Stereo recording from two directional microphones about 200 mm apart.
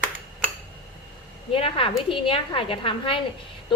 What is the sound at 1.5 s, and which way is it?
A woman's voice, 25° left (ahead or behind).